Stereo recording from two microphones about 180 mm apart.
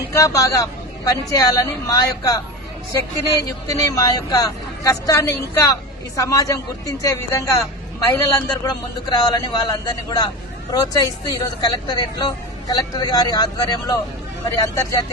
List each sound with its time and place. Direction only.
0.1 s speech: 20° left (ahead or behind)